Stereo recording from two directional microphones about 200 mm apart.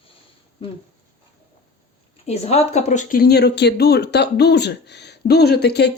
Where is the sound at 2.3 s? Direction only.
30° left (ahead or behind); by 5.9 s 55° left (ahead or behind).